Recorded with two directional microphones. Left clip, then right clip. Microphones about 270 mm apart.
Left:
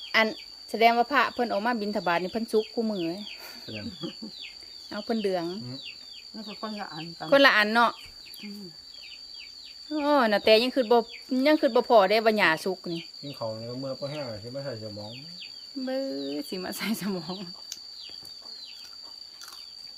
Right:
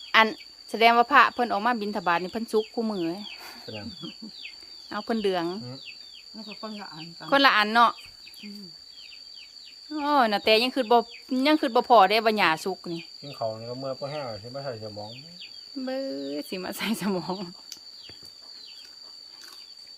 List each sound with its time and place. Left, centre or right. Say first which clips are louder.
0.1 s speech: right 4 dB; centre
4.9 s speech: right 2 dB; centre
6.6 s speech: left 4 dB; left
7.3 s speech: left 1 dB; centre
9.9 s speech: even; centre
13.8 s speech: right 2 dB; centre
15.8 s speech: even; centre